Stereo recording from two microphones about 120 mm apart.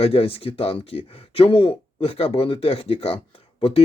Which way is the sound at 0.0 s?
55° left (ahead or behind).